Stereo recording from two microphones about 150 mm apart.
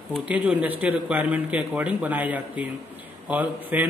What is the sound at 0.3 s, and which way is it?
A man's voice, 10° right (ahead or behind).